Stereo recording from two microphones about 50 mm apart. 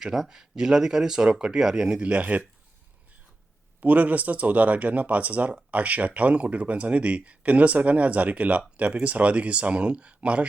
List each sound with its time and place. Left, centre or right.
0.0 s speech: centre; by 2.4 s right
3.8 s speech: right